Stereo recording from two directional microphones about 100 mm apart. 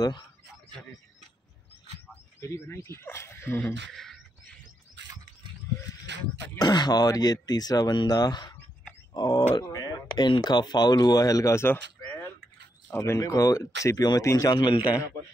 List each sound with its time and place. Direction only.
2.4 s speech: 25° left (ahead or behind)
3.6 s speech: 5° left (ahead or behind)
6.6 s speech: 45° left (ahead or behind); by 11.8 s 25° left (ahead or behind)
12.0 s a sound: 15° left (ahead or behind)
13.0 s speech: 30° left (ahead or behind)
14.8 s a man's voice: 15° right (ahead or behind)